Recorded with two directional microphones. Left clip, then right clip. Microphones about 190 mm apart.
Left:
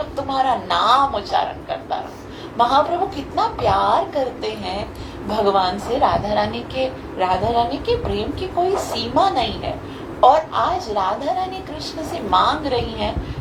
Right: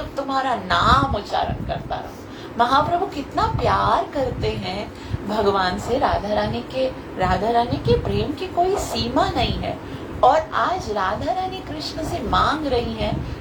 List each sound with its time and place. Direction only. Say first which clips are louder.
0.3 s a woman's voice: left 2 dB; 25° left (ahead or behind)
2.6 s a woman's voice: left 2 dB; 25° left (ahead or behind)